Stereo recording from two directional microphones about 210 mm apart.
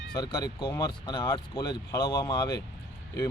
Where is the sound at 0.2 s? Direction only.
20° left (ahead or behind).